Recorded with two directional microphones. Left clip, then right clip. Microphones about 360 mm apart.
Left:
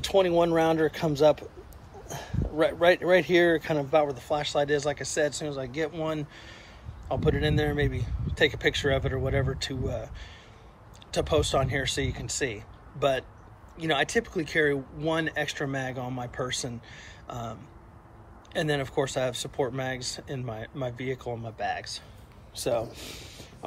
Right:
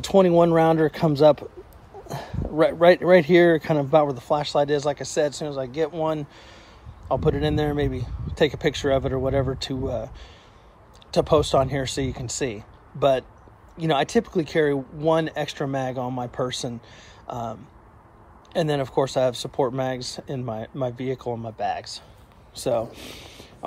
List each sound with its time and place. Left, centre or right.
0.0 s speech: centre
2.0 s a sound: right
2.8 s speech: centre
21.3 s speech: right
21.5 s speech: centre